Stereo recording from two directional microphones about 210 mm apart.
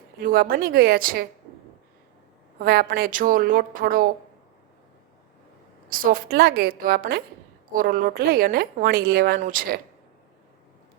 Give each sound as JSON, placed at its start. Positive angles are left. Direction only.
{"t": 0.2, "sound": "a woman's voice", "side_deg": -40}
{"t": 2.6, "sound": "a woman's voice", "side_deg": -45}
{"t": 5.9, "sound": "a woman's voice", "side_deg": -40}